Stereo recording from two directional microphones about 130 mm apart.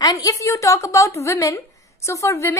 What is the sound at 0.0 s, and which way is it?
A woman's voice, 30° left (ahead or behind).